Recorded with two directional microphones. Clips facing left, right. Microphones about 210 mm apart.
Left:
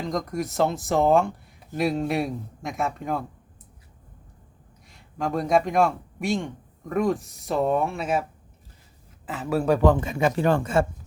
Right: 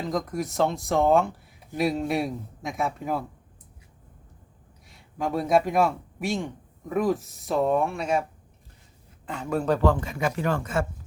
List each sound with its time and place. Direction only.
0.0 s speech: centre (ahead or behind)
4.9 s speech: centre (ahead or behind)
9.2 s speech: 5° left (ahead or behind); by 10.8 s 30° left (ahead or behind)